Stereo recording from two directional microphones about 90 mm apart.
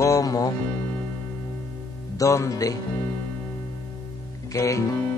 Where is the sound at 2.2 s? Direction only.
35° left (ahead or behind).